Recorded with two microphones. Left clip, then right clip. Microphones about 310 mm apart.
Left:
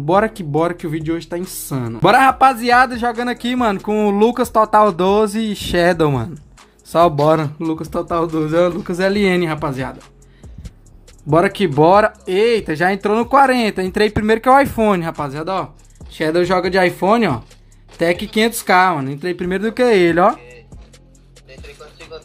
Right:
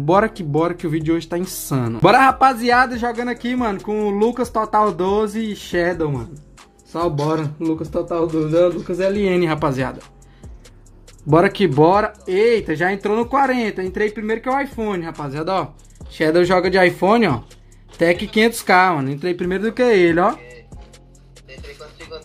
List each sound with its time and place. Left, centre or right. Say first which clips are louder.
0.0 s speech: left 1 dB; centre
11.2 s speech: even; centre
15.1 s speech: even; centre
21.5 s music: right 1 dB; centre